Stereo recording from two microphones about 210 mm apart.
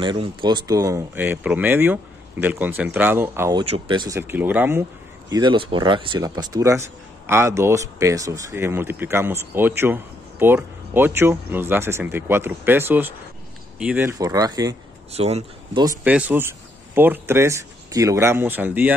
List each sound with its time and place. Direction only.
0.0 s speech: 20° right (ahead or behind)
3.5 s speech: 25° right (ahead or behind)
4.2 s speech: 10° right (ahead or behind)
5.3 s speech: 20° right (ahead or behind)
15.1 s speech: 30° right (ahead or behind)
16.0 s speech: 5° right (ahead or behind)